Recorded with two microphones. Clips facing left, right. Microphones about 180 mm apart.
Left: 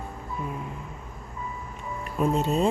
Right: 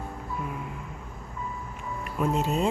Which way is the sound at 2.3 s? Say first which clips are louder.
Left 2 dB; 35° left (ahead or behind).